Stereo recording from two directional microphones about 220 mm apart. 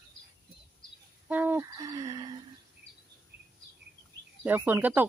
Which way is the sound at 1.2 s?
10° right (ahead or behind).